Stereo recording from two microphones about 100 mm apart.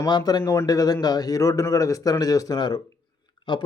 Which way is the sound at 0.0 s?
40° left (ahead or behind).